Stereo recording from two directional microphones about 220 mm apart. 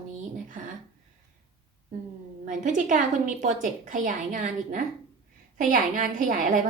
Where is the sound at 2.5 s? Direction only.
35° right (ahead or behind).